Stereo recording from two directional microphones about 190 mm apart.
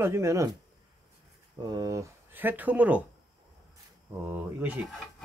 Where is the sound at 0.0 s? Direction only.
15° right (ahead or behind).